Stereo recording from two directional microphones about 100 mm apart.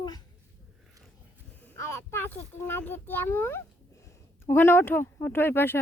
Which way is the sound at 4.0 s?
30° left (ahead or behind).